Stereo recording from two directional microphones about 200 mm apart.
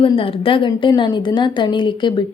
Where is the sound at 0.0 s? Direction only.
25° left (ahead or behind).